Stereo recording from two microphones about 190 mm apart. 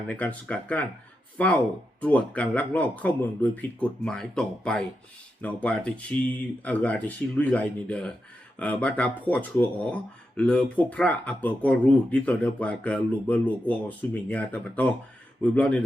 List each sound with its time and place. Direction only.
0.1 s speech: 5° left (ahead or behind)